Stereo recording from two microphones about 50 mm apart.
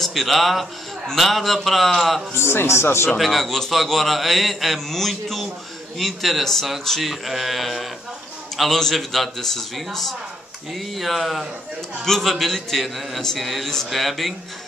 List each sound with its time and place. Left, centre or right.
0.0 s a man's voice: centre
2.3 s speech: left
3.2 s a man's voice: centre